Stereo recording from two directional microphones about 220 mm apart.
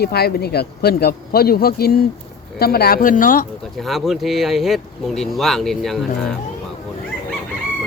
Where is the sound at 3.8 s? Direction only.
Centre (ahead or behind).